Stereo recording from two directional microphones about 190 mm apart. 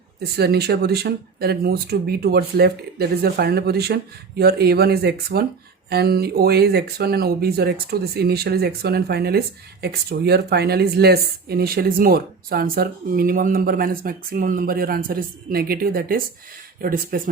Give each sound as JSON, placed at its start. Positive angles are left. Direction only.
{"t": 0.2, "sound": "speech", "side_deg": -60}